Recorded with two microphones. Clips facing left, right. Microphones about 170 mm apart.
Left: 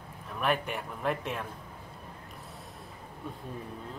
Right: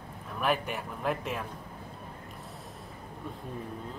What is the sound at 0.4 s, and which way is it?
A man's voice, centre (ahead or behind).